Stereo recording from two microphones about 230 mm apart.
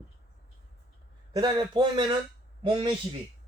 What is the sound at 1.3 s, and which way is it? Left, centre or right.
Speech, centre.